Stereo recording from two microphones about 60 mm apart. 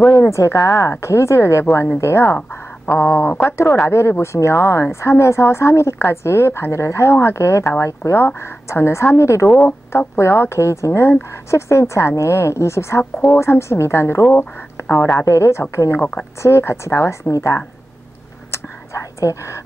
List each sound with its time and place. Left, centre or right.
0.1 s speech: left
9.6 s speech: left
10.6 s a woman's voice: left
14.9 s speech: left
15.1 s speech: left
18.5 s whispering: left